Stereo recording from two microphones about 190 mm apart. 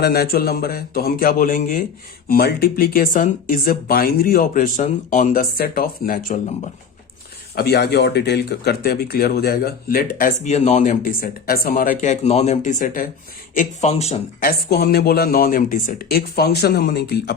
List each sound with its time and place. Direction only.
0.0 s speech: 55° left (ahead or behind)
7.5 s speech: 55° left (ahead or behind); by 14.2 s 35° left (ahead or behind)
14.4 s speech: 55° left (ahead or behind)